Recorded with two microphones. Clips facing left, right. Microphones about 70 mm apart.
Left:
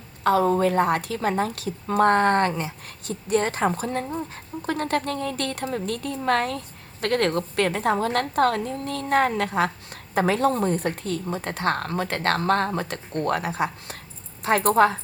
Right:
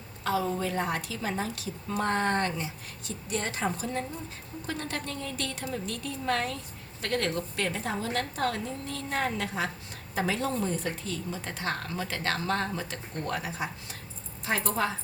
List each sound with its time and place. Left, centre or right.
0.3 s a woman's voice: left